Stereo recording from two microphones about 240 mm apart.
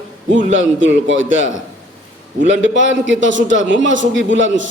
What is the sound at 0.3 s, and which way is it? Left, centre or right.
A man's voice, right.